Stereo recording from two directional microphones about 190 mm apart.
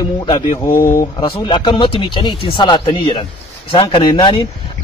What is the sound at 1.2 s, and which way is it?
Speech, 25° left (ahead or behind).